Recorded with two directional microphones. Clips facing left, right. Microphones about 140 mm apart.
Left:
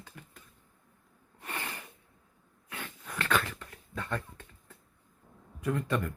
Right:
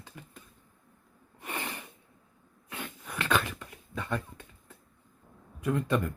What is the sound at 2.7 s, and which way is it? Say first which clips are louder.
Dog: right 2 dB; 15° right (ahead or behind).